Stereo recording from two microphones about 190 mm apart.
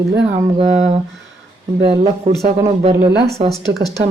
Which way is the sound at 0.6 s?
35° right (ahead or behind).